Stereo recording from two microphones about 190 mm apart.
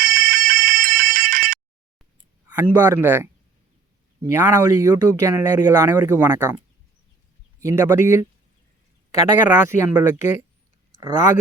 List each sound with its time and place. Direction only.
0.0 s fire alarm: 50° right (ahead or behind)
2.5 s speech: 10° right (ahead or behind)
7.6 s speech: 15° right (ahead or behind)
10.1 s speech: 40° left (ahead or behind)